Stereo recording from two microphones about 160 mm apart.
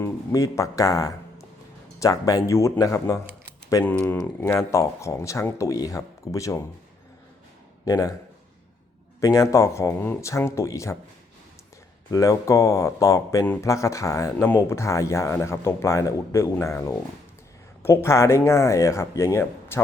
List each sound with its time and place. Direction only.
0.0 s speech: 20° left (ahead or behind)
7.9 s speech: 20° left (ahead or behind)
9.2 s speech: 20° left (ahead or behind)
12.1 s speech: 20° left (ahead or behind)